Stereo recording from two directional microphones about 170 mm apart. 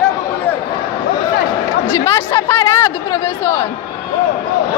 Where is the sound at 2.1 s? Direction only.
25° left (ahead or behind).